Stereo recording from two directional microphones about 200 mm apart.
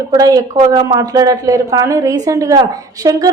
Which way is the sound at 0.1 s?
15° right (ahead or behind).